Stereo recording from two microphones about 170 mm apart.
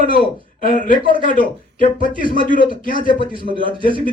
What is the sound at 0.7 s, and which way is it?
Speech, 55° left (ahead or behind).